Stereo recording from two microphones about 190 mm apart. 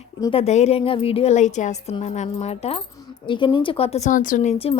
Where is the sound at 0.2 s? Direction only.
30° left (ahead or behind).